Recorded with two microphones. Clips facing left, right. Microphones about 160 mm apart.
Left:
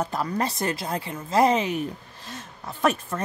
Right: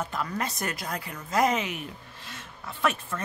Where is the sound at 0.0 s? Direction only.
35° left (ahead or behind).